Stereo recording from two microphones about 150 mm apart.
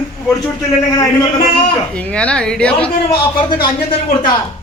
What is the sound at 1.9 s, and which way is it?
A woman's voice, 5° left (ahead or behind).